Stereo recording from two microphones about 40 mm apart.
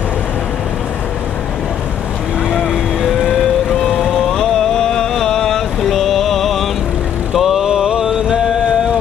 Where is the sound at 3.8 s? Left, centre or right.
Centre.